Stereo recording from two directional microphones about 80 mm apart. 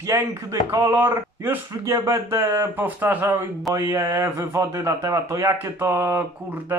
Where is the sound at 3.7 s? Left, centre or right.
Right.